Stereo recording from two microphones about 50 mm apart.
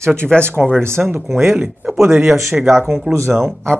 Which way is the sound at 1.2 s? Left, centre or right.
Centre.